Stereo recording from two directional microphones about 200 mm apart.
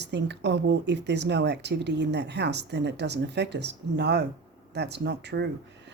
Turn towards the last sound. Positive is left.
turn(degrees=-55)  # may be behind; listen again after turning